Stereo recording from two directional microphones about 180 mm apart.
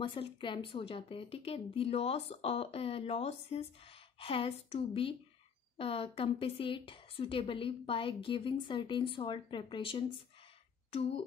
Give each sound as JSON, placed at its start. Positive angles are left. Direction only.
{"t": 0.0, "sound": "a woman's voice", "side_deg": 30}